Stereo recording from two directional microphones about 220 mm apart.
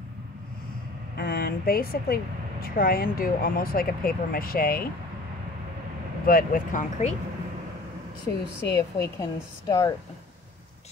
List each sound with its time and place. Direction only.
1.1 s a woman's voice: 45° left (ahead or behind)
6.2 s speech: 40° left (ahead or behind)
8.3 s a woman's voice: 10° left (ahead or behind)